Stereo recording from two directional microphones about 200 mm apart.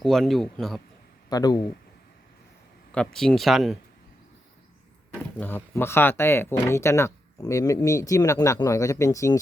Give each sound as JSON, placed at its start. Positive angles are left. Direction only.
{"t": 0.0, "sound": "speech", "side_deg": 0}
{"t": 1.3, "sound": "speech", "side_deg": 20}
{"t": 2.9, "sound": "speech", "side_deg": 5}
{"t": 5.4, "sound": "speech", "side_deg": 10}